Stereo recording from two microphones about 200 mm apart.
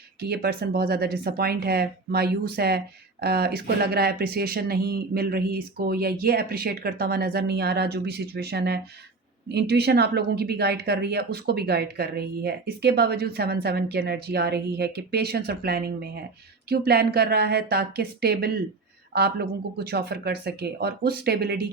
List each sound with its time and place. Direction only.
0.2 s speech: 50° right (ahead or behind)